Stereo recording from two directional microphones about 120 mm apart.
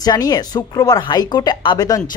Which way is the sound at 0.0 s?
30° left (ahead or behind).